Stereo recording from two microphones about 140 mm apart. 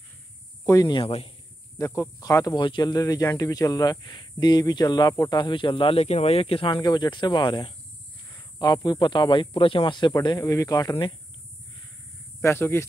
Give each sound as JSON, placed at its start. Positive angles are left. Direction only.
{"t": 0.7, "sound": "speech", "side_deg": 25}
{"t": 1.0, "sound": "speech", "side_deg": 45}
{"t": 1.8, "sound": "speech", "side_deg": 20}
{"t": 12.4, "sound": "speech", "side_deg": 15}